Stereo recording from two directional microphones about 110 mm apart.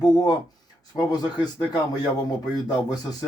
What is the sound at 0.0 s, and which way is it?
Speech, 40° left (ahead or behind).